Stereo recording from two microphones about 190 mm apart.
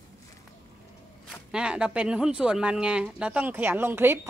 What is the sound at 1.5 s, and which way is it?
Speech, 5° right (ahead or behind).